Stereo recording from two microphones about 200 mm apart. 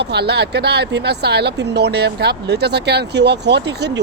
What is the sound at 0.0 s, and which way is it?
Speech, 55° right (ahead or behind).